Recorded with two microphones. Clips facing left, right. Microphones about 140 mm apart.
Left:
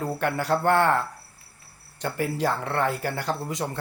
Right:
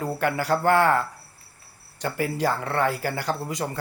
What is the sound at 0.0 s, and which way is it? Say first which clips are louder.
Speech: right 1 dB; centre (ahead or behind).